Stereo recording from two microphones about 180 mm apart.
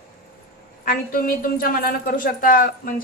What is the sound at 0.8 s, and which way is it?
A woman's voice, 55° left (ahead or behind).